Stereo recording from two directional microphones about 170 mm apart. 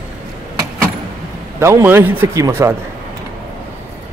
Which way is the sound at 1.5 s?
15° right (ahead or behind).